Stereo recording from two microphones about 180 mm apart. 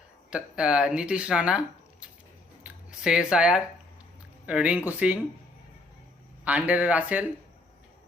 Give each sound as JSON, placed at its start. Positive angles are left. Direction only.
{"t": 0.3, "sound": "speech", "side_deg": -5}
{"t": 6.4, "sound": "speech", "side_deg": -5}